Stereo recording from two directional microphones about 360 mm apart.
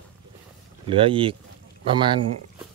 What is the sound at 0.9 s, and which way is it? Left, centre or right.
Speech, centre.